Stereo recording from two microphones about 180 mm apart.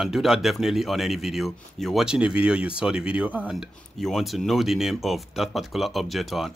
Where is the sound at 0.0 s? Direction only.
Centre (ahead or behind).